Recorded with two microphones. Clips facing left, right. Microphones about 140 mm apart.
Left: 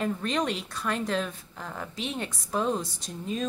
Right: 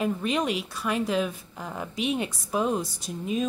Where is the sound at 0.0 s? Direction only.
10° right (ahead or behind).